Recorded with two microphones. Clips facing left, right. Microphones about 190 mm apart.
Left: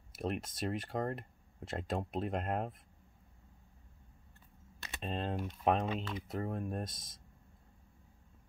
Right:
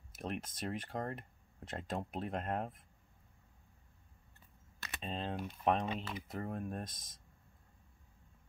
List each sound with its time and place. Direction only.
0.2 s speech: 5° left (ahead or behind)
4.7 s camera: 20° left (ahead or behind)
5.0 s speech: centre (ahead or behind)